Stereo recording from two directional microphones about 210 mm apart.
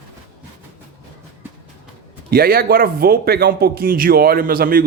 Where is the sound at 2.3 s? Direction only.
45° right (ahead or behind).